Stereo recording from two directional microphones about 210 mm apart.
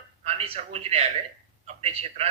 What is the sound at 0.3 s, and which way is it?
A man's voice, 30° right (ahead or behind).